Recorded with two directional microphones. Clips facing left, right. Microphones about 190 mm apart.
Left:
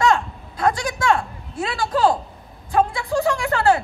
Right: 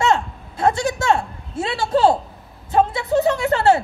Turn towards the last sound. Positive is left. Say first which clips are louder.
# right 2 dB
turn(degrees=-25)  # may be behind; listen again after turning